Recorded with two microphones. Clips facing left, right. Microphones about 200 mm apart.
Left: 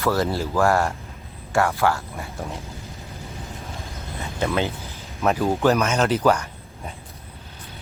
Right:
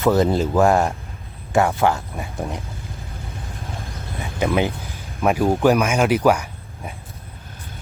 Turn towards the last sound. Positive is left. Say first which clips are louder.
# right 2 dB
turn(degrees=-10)  # may be behind; listen again after turning